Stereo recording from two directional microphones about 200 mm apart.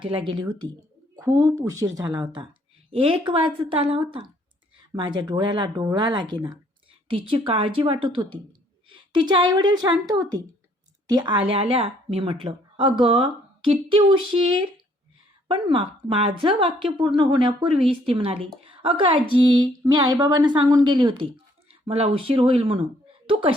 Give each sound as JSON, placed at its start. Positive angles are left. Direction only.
{"t": 0.3, "sound": "a woman's voice", "side_deg": -20}